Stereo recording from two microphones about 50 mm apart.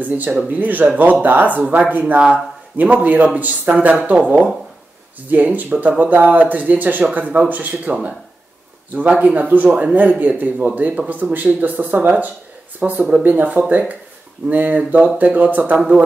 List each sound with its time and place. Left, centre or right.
0.0 s a man's voice: right